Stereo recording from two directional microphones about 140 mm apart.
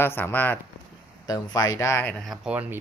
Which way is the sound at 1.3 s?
25° left (ahead or behind).